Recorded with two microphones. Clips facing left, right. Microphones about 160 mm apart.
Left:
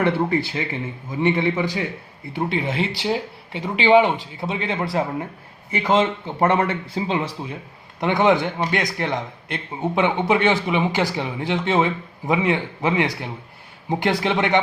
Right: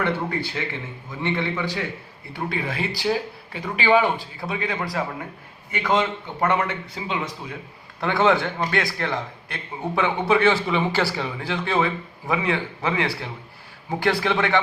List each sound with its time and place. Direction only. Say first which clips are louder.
0.0 s a man's voice: left 5 dB; 20° left (ahead or behind)
8.0 s a man's voice: left 2 dB; 20° left (ahead or behind)